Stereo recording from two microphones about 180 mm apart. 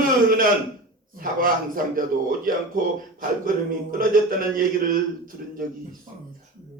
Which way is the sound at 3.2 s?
50° right (ahead or behind).